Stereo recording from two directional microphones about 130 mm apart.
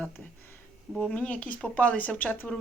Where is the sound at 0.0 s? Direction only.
15° left (ahead or behind).